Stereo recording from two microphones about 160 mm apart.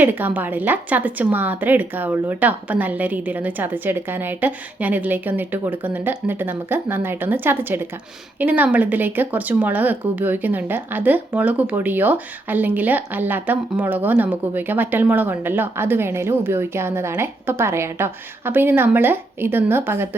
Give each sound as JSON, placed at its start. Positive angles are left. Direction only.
{"t": 0.0, "sound": "speech", "side_deg": -10}